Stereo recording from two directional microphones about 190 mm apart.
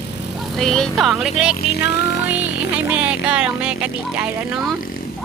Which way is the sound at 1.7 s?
60° left (ahead or behind).